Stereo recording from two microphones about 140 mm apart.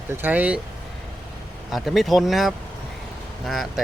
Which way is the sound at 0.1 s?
15° right (ahead or behind).